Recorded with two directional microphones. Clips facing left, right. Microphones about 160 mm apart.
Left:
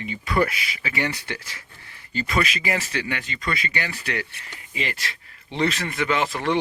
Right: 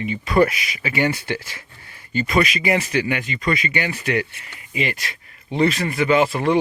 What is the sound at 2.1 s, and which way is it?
Speech, 15° right (ahead or behind).